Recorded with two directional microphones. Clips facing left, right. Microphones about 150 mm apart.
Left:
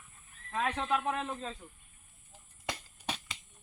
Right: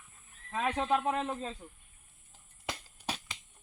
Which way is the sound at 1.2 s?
15° right (ahead or behind).